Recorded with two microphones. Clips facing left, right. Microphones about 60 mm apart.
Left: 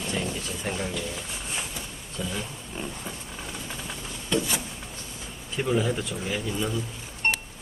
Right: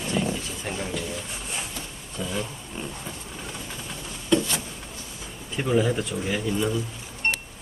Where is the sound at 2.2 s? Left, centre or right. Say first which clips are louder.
Right 1 dB; centre.